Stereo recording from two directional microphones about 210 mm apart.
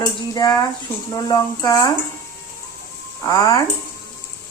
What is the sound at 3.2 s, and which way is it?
Speech, 15° left (ahead or behind).